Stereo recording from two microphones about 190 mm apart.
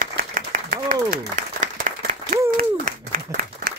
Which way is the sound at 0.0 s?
45° right (ahead or behind).